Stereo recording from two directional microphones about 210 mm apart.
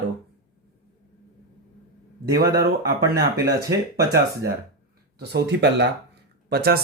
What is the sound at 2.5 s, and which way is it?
Speech, 50° right (ahead or behind).